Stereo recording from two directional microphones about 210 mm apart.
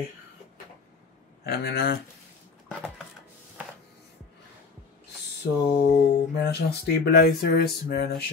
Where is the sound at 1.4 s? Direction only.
50° left (ahead or behind).